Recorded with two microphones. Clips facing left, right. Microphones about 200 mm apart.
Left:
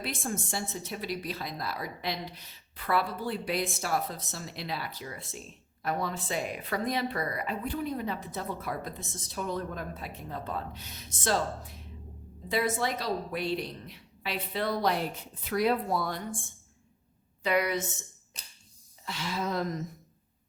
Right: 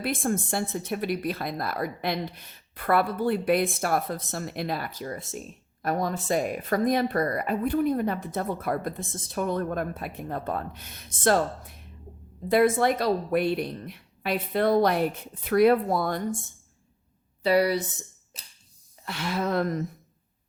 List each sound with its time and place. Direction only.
0.0 s speech: 55° right (ahead or behind)
17.4 s speech: 35° right (ahead or behind)
19.0 s speech: 60° right (ahead or behind)